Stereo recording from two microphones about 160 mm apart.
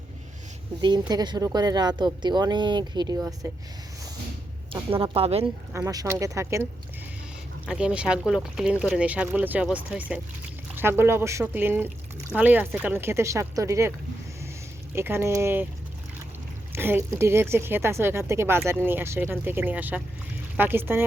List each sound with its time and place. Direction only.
0.8 s speech: 25° right (ahead or behind)
4.7 s a woman's voice: 35° right (ahead or behind)
5.7 s speech: 20° right (ahead or behind)
7.7 s speech: 5° right (ahead or behind)
14.9 s speech: 15° right (ahead or behind)
16.7 s speech: 15° right (ahead or behind)